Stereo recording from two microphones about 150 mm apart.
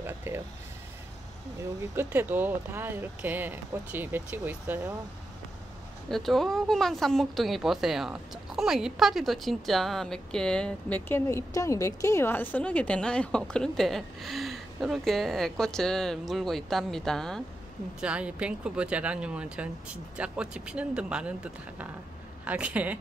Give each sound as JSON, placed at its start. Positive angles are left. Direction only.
{"t": 0.0, "sound": "speech", "side_deg": -15}
{"t": 2.0, "sound": "speech", "side_deg": -15}
{"t": 6.0, "sound": "a woman's voice", "side_deg": 0}
{"t": 18.0, "sound": "speech", "side_deg": -5}